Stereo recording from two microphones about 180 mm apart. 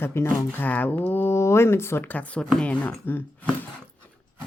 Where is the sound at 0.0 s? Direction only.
15° left (ahead or behind).